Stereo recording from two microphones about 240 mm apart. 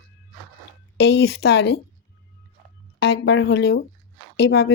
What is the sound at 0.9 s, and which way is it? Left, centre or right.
Speech, left.